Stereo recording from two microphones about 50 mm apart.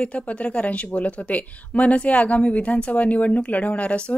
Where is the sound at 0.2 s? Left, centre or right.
Left.